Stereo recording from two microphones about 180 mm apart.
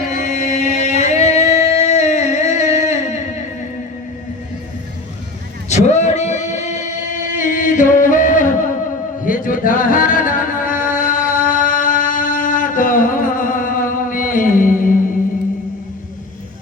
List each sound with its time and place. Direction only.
0.1 s music: 45° left (ahead or behind)
5.6 s a sound: 40° left (ahead or behind)
9.2 s music: 50° left (ahead or behind)